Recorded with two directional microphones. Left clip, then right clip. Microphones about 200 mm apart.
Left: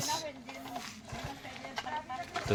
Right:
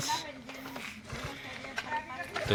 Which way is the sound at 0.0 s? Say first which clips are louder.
Right 2 dB; 25° left (ahead or behind).